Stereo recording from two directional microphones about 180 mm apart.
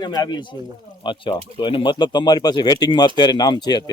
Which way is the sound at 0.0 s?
20° left (ahead or behind).